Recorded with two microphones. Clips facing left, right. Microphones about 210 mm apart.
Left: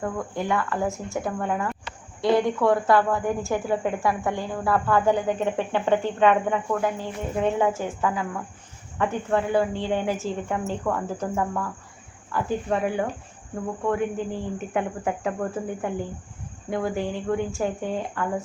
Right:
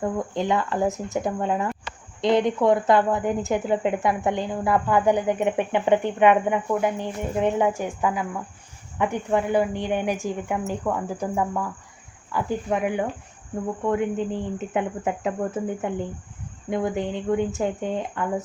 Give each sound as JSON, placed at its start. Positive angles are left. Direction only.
{"t": 0.0, "sound": "speech", "side_deg": -20}